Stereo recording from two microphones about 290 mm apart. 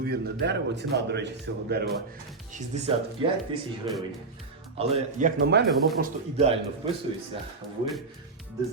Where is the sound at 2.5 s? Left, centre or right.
Right.